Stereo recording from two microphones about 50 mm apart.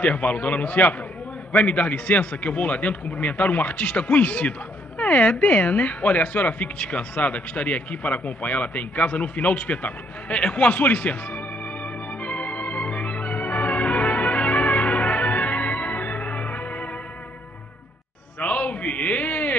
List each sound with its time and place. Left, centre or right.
0.0 s a man's voice: left
12.2 s organ: left
18.4 s a sound: left